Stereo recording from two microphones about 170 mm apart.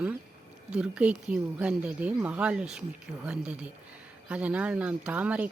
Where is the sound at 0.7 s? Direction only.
5° right (ahead or behind).